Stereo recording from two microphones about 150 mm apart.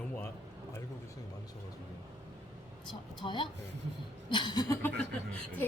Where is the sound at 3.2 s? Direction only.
35° left (ahead or behind).